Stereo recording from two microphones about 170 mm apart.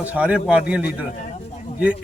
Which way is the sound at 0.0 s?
10° right (ahead or behind).